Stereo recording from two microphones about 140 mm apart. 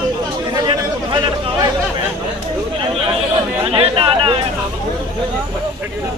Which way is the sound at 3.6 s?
45° right (ahead or behind).